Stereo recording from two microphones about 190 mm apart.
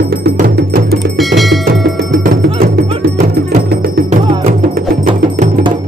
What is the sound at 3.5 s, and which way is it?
Music, 50° right (ahead or behind).